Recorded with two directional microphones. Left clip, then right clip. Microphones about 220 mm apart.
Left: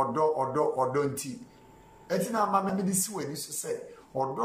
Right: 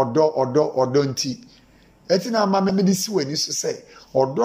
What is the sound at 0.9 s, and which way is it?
Speech, 15° right (ahead or behind).